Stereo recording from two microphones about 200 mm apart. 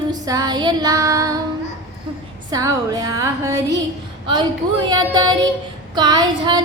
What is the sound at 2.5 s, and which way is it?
A woman's voice, 20° right (ahead or behind).